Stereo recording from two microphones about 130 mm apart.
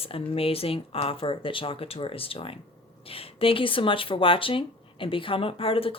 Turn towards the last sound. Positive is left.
turn(degrees=45)  # may be behind; listen again after turning